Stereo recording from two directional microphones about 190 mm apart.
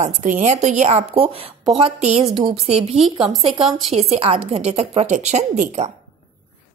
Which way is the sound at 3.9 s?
35° right (ahead or behind).